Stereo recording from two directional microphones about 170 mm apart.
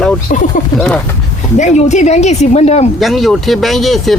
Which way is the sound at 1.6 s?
45° left (ahead or behind).